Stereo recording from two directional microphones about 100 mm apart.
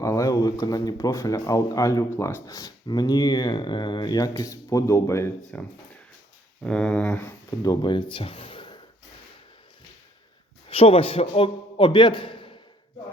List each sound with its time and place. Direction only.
0.0 s a sound: 30° left (ahead or behind)
0.6 s speech: 40° left (ahead or behind)
5.5 s speech: 15° left (ahead or behind)
7.6 s speech: 45° left (ahead or behind)
10.7 s a man's voice: 70° left (ahead or behind)